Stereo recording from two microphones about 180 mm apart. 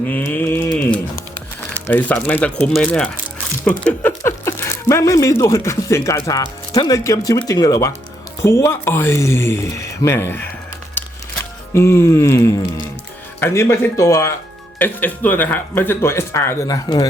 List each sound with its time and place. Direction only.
0.5 s a sound: 10° left (ahead or behind)
1.7 s speech: 10° left (ahead or behind)
11.7 s speech: 15° left (ahead or behind)